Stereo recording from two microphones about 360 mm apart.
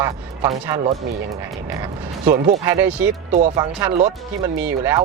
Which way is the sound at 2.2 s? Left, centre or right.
Centre.